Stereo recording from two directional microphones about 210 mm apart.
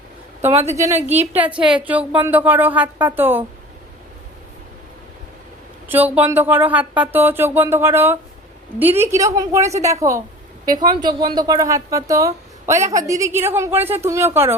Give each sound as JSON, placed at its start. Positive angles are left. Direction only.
{"t": 0.7, "sound": "speech", "side_deg": -15}
{"t": 5.9, "sound": "speech", "side_deg": -10}